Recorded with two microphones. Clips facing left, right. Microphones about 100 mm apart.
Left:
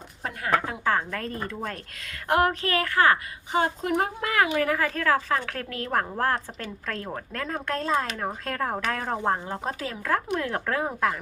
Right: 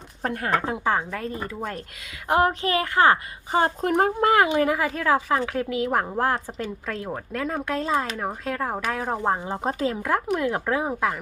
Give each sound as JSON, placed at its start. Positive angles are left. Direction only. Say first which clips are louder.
{"t": 0.2, "sound": "speech", "louder": "right 1 dB", "side_deg": -45}
{"t": 0.6, "sound": "a woman's voice", "louder": "right 2 dB", "side_deg": -25}
{"t": 0.9, "sound": "a woman's voice", "louder": "right 1 dB", "side_deg": -5}
{"t": 3.6, "sound": "a woman's voice", "louder": "right 4 dB", "side_deg": -40}
{"t": 10.3, "sound": "a woman's voice", "louder": "right 3 dB", "side_deg": -10}